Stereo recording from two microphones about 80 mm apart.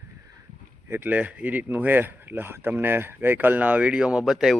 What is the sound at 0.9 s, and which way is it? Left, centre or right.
Speech, right.